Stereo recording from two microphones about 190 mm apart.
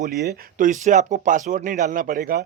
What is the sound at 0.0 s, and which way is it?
Speech, 55° right (ahead or behind).